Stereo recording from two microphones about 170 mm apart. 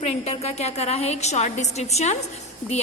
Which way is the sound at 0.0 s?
40° left (ahead or behind).